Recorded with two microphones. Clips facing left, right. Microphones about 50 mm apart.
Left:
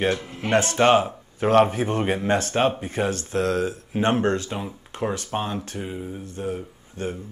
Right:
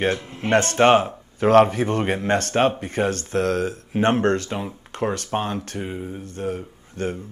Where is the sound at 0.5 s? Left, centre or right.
Right.